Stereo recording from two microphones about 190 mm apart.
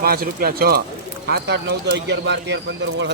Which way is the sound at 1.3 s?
65° right (ahead or behind).